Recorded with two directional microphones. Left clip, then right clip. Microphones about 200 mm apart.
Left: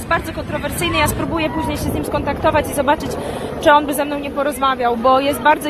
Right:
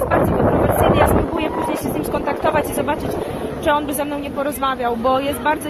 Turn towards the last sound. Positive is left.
turn(degrees=15)  # may be behind; listen again after turning